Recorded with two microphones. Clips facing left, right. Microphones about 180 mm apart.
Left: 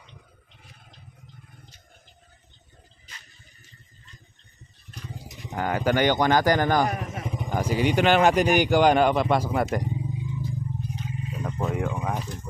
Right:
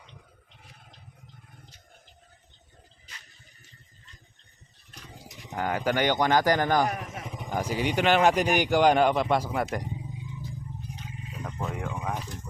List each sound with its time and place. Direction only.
5.5 s speech: 65° left (ahead or behind)
7.5 s speech: 85° left
9.5 s speech: 45° left (ahead or behind)
11.7 s a sound: 60° left (ahead or behind)